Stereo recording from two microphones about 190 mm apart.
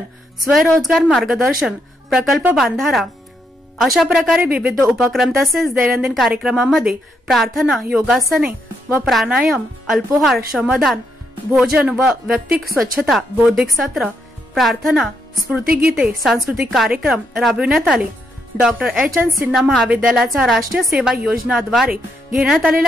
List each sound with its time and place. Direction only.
0.5 s speech: centre (ahead or behind)
8.5 s a woman's voice: 10° right (ahead or behind)
9.0 s a woman's voice: centre (ahead or behind)
15.6 s a woman's voice: 50° right (ahead or behind)
15.9 s a woman's voice: centre (ahead or behind)